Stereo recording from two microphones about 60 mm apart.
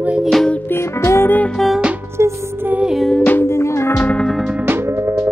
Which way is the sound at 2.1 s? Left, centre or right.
Right.